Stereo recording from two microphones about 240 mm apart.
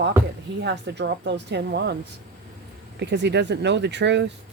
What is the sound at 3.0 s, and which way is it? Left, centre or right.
Speech, right.